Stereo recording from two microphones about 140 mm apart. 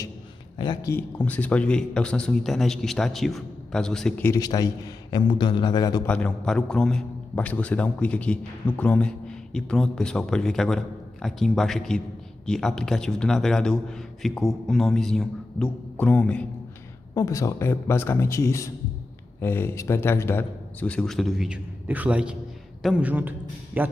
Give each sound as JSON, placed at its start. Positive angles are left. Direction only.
{"t": 0.6, "sound": "a man's voice", "side_deg": 30}
{"t": 1.2, "sound": "a man's voice", "side_deg": 10}
{"t": 4.2, "sound": "a man's voice", "side_deg": 20}
{"t": 6.0, "sound": "a man's voice", "side_deg": 10}
{"t": 17.1, "sound": "a man's voice", "side_deg": 25}